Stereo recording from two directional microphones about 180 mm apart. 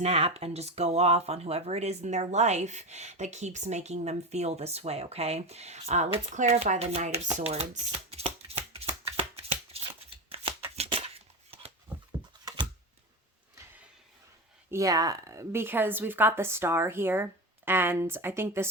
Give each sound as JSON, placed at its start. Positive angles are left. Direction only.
{"t": 0.0, "sound": "speech", "side_deg": -35}
{"t": 10.2, "sound": "shuffling cards", "side_deg": -30}
{"t": 11.5, "sound": "a sound", "side_deg": -35}
{"t": 14.7, "sound": "speech", "side_deg": -20}